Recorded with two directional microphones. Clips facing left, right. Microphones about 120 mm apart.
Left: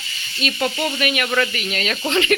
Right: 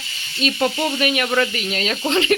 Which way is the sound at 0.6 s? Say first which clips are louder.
Right 1 dB; 25° right (ahead or behind).